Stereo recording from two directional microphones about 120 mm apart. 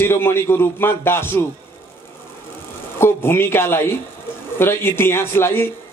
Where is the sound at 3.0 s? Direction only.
20° left (ahead or behind).